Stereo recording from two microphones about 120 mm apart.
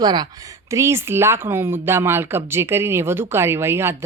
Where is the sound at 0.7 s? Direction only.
25° right (ahead or behind).